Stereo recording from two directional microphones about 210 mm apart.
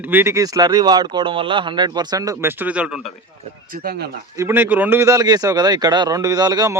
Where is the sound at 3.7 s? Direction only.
45° right (ahead or behind).